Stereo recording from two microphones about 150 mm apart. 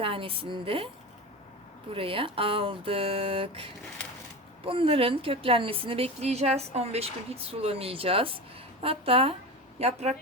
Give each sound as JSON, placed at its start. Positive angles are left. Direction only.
{"t": 0.0, "sound": "a woman's voice", "side_deg": -35}
{"t": 1.9, "sound": "a woman's voice", "side_deg": -35}